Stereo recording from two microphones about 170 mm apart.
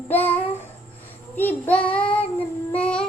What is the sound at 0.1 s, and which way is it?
Babbling, 10° left (ahead or behind).